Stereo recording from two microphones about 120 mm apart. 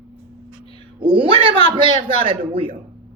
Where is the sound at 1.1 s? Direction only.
50° right (ahead or behind).